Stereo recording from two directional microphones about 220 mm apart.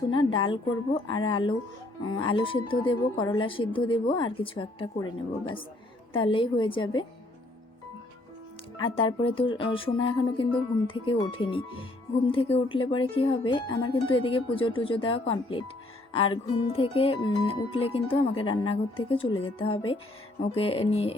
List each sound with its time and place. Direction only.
0.3 s speech: 20° left (ahead or behind)
8.8 s speech: 25° left (ahead or behind)